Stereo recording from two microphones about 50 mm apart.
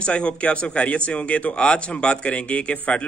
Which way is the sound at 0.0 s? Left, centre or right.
Left.